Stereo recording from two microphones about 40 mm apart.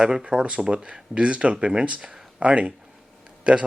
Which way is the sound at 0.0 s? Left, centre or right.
Centre.